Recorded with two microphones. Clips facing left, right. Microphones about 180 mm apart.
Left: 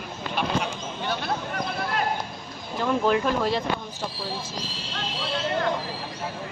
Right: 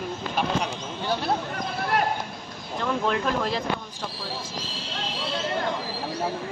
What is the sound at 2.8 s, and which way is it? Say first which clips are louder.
Speech: left 3 dB; 5° left (ahead or behind).